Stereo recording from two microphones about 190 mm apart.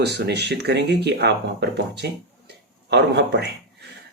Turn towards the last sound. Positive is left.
turn(degrees=-60)  # may be behind; listen again after turning